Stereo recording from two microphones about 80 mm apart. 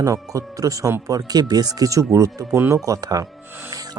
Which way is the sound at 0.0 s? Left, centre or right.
Right.